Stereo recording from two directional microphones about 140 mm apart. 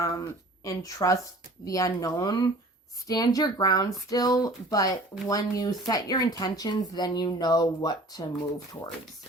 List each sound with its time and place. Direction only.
0.0 s speech: 25° left (ahead or behind)